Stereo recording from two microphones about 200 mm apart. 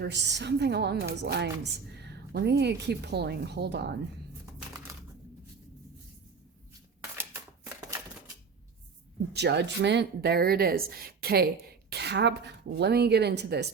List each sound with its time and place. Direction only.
0.0 s a woman's voice: 60° right (ahead or behind)
9.3 s a woman's voice: 55° right (ahead or behind)